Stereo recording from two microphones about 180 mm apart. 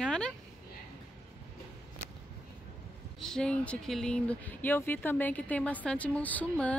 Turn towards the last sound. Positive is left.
turn(degrees=10)  # may be behind; listen again after turning